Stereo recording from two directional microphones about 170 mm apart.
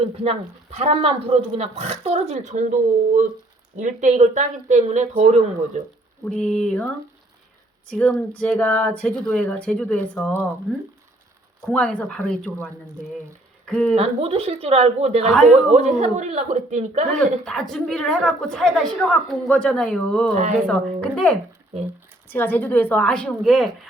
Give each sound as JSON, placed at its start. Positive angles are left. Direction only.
{"t": 0.0, "sound": "speech", "side_deg": -35}
{"t": 3.8, "sound": "speech", "side_deg": -45}
{"t": 6.2, "sound": "speech", "side_deg": 5}
{"t": 7.9, "sound": "speech", "side_deg": 5}
{"t": 11.6, "sound": "speech", "side_deg": 5}
{"t": 13.9, "sound": "speech", "side_deg": -35}
{"t": 15.3, "sound": "speech", "side_deg": 5}
{"t": 15.7, "sound": "speech", "side_deg": -40}
{"t": 17.2, "sound": "speech", "side_deg": 5}
{"t": 20.3, "sound": "speech", "side_deg": -45}
{"t": 20.6, "sound": "speech", "side_deg": 5}